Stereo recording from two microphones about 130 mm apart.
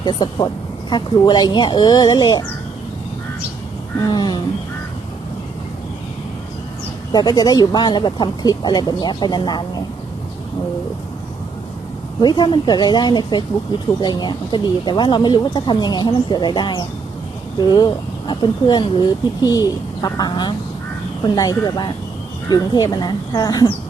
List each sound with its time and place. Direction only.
0.0 s speech: 35° left (ahead or behind)
4.0 s speech: 35° left (ahead or behind)
7.1 s speech: 30° left (ahead or behind)
12.2 s speech: 35° left (ahead or behind)